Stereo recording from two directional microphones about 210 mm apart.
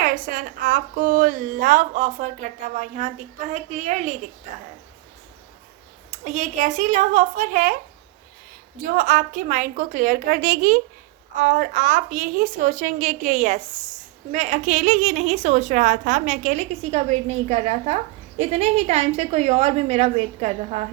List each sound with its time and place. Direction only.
0.0 s a woman's voice: 40° right (ahead or behind)
6.1 s a woman's voice: 35° right (ahead or behind)
8.8 s a woman's voice: 40° right (ahead or behind)